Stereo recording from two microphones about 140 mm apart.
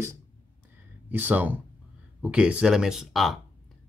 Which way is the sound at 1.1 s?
15° right (ahead or behind).